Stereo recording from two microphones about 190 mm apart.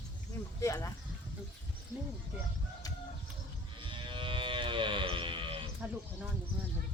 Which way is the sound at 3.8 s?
25° right (ahead or behind).